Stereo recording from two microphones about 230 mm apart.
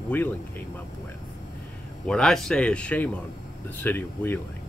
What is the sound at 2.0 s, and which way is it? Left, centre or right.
Speech, centre.